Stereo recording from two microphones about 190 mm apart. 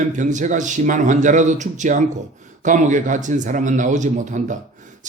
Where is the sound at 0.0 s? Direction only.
40° right (ahead or behind).